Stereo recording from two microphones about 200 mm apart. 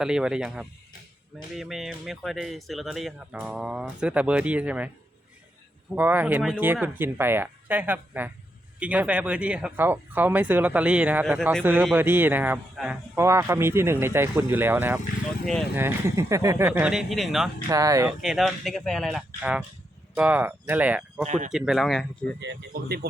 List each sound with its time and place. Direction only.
0.0 s speech: 5° right (ahead or behind)
5.9 s speech: 10° right (ahead or behind)
17.7 s speech: 15° right (ahead or behind)
18.2 s speech: centre (ahead or behind)
21.2 s speech: 40° right (ahead or behind)
21.5 s speech: centre (ahead or behind)
22.4 s speech: 60° right (ahead or behind)